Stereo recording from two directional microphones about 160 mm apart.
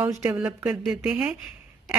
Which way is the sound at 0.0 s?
15° right (ahead or behind).